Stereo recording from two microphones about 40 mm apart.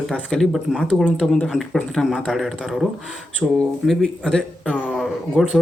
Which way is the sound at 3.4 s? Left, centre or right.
Centre.